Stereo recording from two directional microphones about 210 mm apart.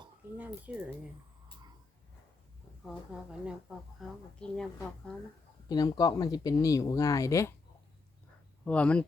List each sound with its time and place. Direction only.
0.3 s speech: 10° right (ahead or behind)
3.1 s speech: 5° right (ahead or behind)
5.6 s speech: 20° left (ahead or behind)
8.6 s speech: 5° left (ahead or behind)